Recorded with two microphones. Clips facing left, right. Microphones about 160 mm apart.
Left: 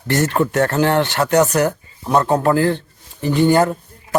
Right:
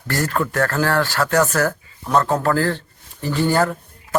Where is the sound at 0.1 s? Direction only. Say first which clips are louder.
Left 5 dB; 25° left (ahead or behind).